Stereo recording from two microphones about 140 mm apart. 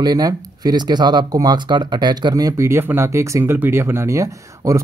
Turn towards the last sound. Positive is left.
turn(degrees=-20)  # may be behind; listen again after turning